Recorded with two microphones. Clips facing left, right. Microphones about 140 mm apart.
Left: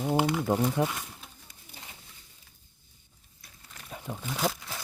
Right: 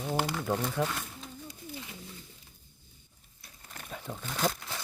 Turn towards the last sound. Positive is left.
turn(degrees=5)  # may be behind; listen again after turning